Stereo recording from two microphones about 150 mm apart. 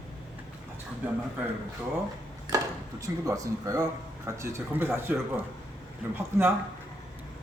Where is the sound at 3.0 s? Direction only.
20° right (ahead or behind).